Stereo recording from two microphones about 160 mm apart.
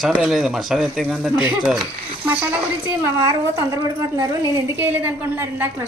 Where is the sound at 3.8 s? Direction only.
20° right (ahead or behind).